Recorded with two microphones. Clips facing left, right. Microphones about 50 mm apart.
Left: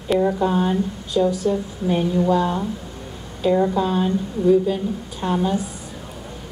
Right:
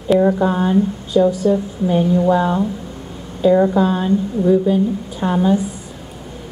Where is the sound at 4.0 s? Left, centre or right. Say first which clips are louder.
Right 3 dB; centre.